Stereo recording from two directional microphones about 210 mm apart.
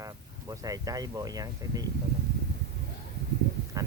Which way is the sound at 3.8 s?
15° right (ahead or behind).